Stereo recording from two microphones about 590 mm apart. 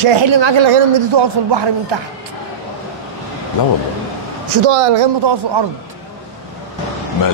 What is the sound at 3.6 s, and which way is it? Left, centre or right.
Speech, left.